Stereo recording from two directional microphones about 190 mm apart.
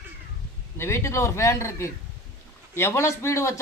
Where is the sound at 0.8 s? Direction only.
15° left (ahead or behind).